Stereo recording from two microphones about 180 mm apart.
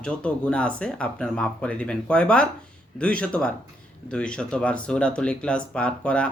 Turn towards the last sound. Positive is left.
turn(degrees=5)  # may be behind; listen again after turning